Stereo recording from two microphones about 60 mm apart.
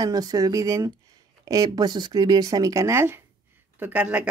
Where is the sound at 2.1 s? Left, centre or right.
Right.